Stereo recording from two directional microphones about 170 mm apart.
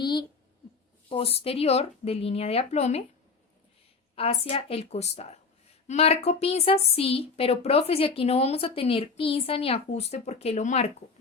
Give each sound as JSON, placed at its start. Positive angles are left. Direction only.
{"t": 0.0, "sound": "a sound", "side_deg": 25}
{"t": 1.1, "sound": "speech", "side_deg": 35}
{"t": 4.1, "sound": "speech", "side_deg": 35}